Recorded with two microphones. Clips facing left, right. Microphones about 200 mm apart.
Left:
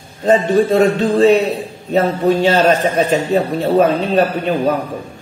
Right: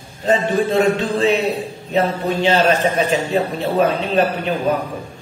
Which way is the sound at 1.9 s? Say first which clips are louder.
Left 5 dB; 45° left (ahead or behind).